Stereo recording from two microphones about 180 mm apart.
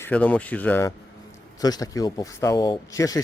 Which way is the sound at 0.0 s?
10° left (ahead or behind).